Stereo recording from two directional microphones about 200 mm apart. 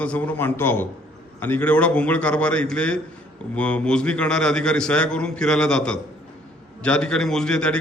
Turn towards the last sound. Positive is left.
turn(degrees=5)  # may be behind; listen again after turning